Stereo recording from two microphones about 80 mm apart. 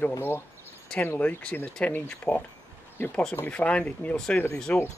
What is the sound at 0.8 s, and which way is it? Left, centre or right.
Speech, centre.